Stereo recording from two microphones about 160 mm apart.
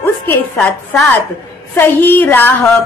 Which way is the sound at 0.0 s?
15° left (ahead or behind).